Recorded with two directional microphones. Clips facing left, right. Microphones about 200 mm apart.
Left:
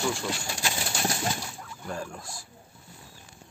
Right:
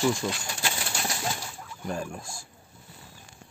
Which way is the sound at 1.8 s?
20° right (ahead or behind).